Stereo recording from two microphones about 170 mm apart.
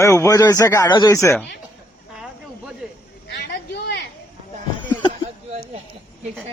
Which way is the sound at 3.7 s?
75° left (ahead or behind).